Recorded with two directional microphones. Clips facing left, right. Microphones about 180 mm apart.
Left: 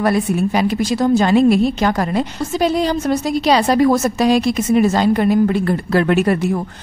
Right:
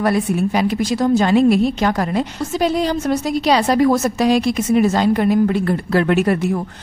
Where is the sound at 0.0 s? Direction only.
35° left (ahead or behind).